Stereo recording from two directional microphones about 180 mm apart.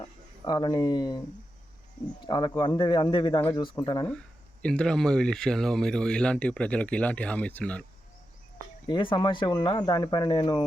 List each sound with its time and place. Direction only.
0.4 s speech: 25° left (ahead or behind)
2.2 s speech: 25° left (ahead or behind)
4.6 s speech: 5° left (ahead or behind)
8.9 s speech: 25° left (ahead or behind)